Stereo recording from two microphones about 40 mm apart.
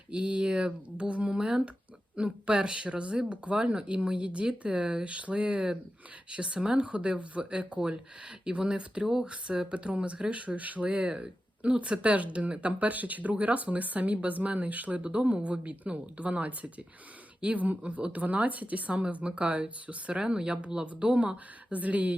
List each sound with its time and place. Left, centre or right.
0.1 s speech: right